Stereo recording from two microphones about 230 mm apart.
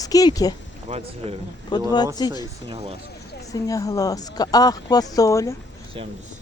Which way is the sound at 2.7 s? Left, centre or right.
Right.